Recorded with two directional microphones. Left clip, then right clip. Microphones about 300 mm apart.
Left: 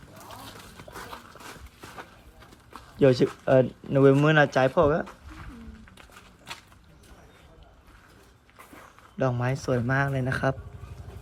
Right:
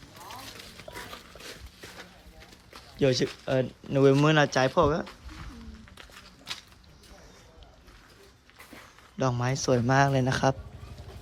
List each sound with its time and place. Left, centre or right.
3.0 s speech: centre
6.0 s walk: centre
9.1 s speech: centre